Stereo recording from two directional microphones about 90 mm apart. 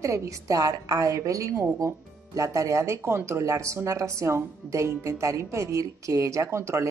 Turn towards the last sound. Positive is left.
turn(degrees=-30)  # may be behind; listen again after turning